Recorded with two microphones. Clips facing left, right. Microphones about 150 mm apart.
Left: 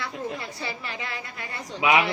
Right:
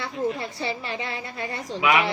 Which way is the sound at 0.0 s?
25° right (ahead or behind).